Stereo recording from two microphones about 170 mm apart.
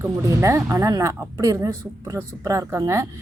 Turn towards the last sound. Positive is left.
turn(degrees=-15)  # may be behind; listen again after turning